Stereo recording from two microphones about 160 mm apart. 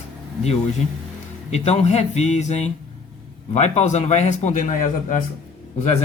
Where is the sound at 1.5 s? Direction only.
45° left (ahead or behind).